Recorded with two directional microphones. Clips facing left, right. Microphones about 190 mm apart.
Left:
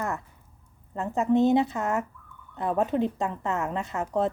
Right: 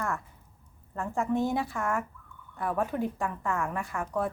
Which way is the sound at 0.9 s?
20° left (ahead or behind).